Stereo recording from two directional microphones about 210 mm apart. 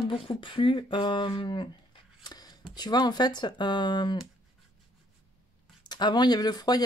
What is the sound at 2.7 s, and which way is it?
Speech, 20° left (ahead or behind).